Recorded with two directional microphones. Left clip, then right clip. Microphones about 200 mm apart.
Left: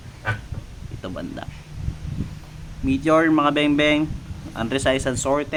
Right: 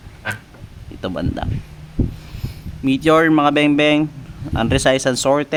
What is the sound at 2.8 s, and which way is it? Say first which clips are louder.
Speech: right 4 dB; 50° right (ahead or behind).